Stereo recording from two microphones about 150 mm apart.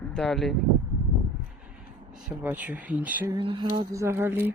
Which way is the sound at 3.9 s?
20° right (ahead or behind).